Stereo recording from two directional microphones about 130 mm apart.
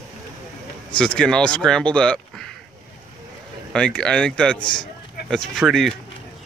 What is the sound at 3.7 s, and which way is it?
Speech, 5° left (ahead or behind).